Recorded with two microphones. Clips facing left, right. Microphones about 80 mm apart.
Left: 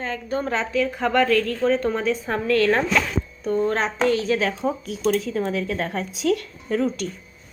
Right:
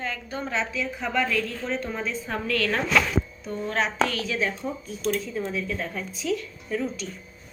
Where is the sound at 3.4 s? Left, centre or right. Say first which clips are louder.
Left 10 dB; left.